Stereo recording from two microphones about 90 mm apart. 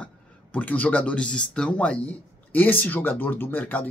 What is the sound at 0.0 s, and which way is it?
Speech, 15° left (ahead or behind).